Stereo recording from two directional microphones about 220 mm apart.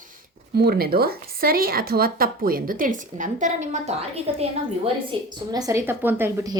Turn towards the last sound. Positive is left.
turn(degrees=-10)  # may be behind; listen again after turning